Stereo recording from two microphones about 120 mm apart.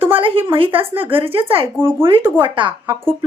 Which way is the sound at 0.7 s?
15° right (ahead or behind).